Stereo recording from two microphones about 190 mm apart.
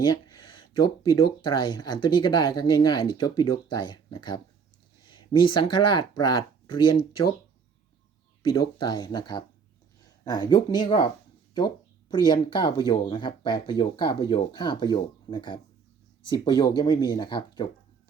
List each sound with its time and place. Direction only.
0.0 s speech: 20° left (ahead or behind)
8.8 s speech: 20° left (ahead or behind)